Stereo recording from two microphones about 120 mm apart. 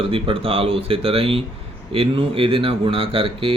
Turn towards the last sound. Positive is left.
turn(degrees=-45)  # may be behind; listen again after turning